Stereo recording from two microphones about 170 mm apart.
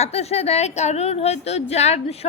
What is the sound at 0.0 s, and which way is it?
A woman's voice, 40° left (ahead or behind).